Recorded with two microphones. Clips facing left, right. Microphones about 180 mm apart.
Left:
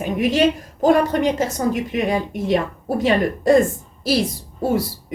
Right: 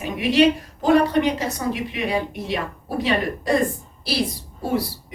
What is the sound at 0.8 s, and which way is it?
Speech, 45° left (ahead or behind).